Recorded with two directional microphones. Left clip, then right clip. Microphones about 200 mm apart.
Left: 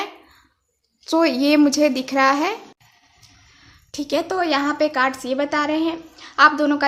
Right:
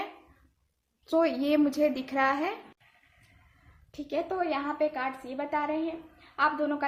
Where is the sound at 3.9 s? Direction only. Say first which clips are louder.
Left 9 dB; 40° left (ahead or behind).